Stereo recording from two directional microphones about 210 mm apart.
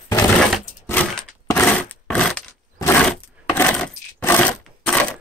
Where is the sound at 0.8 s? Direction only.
5° left (ahead or behind).